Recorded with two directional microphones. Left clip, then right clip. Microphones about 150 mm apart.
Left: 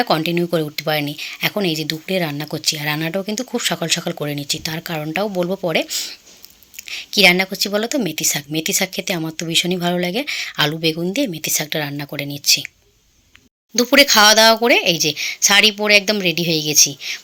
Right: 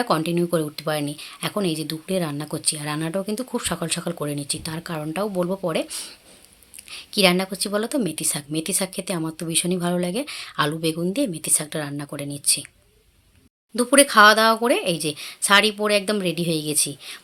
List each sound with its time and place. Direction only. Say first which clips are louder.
0.0 s a woman's voice: left 4 dB; 15° left (ahead or behind)
13.7 s a woman's voice: left 3 dB; 20° left (ahead or behind)